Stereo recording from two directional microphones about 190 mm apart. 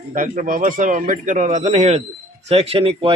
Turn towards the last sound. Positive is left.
turn(degrees=-30)  # may be behind; listen again after turning